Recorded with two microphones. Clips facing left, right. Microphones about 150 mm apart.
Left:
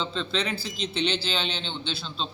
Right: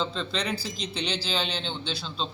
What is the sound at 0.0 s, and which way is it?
A man's voice, 5° right (ahead or behind).